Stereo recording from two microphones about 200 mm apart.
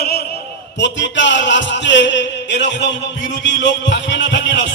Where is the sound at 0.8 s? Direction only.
65° left (ahead or behind).